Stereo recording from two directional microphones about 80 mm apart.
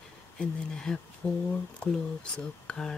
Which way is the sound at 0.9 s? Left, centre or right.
Centre.